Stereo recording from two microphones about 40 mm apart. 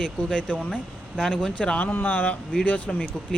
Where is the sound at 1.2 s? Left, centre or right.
Centre.